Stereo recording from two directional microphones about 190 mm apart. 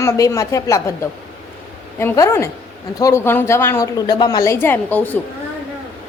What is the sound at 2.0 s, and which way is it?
A woman's voice, 15° left (ahead or behind).